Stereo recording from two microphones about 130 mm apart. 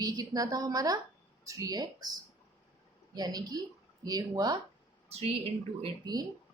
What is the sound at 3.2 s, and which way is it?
Speech, 30° right (ahead or behind).